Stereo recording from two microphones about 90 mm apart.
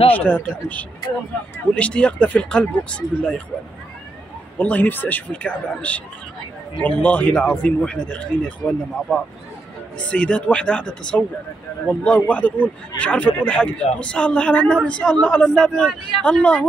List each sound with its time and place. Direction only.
0.1 s a man's voice: 15° left (ahead or behind)
4.6 s a man's voice: 20° left (ahead or behind)